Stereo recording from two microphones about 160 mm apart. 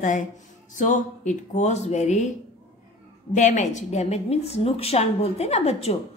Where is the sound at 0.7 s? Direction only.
55° left (ahead or behind).